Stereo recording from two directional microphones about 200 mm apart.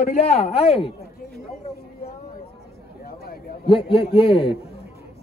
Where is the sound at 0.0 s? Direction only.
35° left (ahead or behind).